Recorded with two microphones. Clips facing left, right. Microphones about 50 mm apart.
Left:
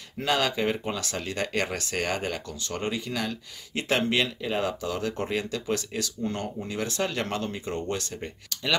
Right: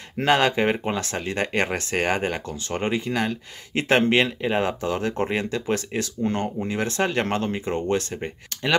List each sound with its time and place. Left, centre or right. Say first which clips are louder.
0.2 s speech: right 6 dB; right